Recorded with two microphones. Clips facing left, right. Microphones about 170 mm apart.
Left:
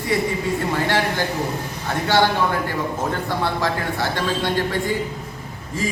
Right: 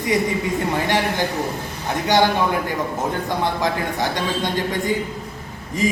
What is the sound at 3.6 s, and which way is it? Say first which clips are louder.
A man's voice: right 1 dB; 15° right (ahead or behind).